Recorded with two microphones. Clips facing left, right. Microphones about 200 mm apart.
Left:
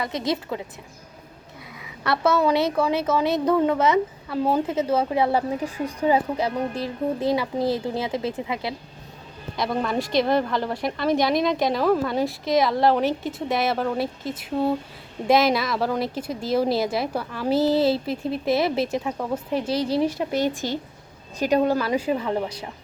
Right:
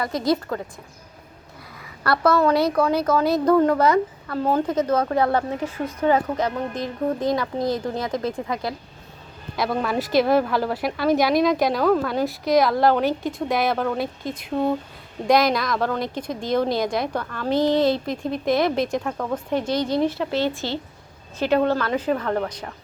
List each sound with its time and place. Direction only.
0.0 s a woman's voice: centre (ahead or behind)
1.8 s a woman's voice: centre (ahead or behind)
19.5 s a woman's voice: 30° left (ahead or behind)
20.0 s a woman's voice: 15° left (ahead or behind)